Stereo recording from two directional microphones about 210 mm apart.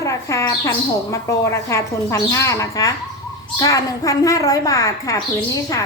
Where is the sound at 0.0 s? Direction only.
15° left (ahead or behind).